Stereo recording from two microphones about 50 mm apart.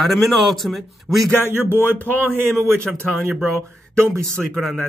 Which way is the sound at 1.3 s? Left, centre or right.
Left.